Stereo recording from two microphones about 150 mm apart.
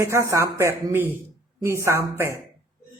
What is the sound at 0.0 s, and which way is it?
Speech, 20° right (ahead or behind).